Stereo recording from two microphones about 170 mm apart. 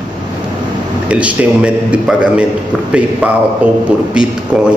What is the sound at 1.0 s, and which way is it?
A man's voice, 5° right (ahead or behind).